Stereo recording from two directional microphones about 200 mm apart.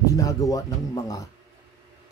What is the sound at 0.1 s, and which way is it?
Speech, 15° left (ahead or behind).